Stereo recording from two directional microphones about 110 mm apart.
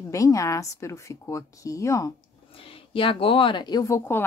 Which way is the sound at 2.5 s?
55° left (ahead or behind).